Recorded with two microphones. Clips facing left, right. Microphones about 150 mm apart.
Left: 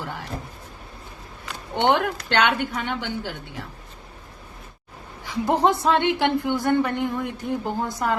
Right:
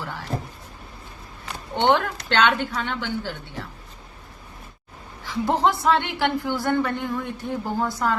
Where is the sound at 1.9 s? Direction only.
15° left (ahead or behind).